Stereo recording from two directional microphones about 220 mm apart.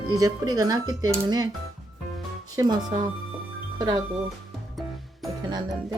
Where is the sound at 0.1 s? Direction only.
15° right (ahead or behind).